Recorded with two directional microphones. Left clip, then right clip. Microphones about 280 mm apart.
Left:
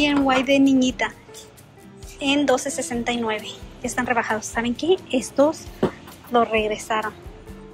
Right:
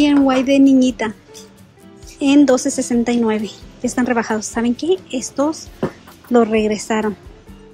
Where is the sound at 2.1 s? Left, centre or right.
Centre.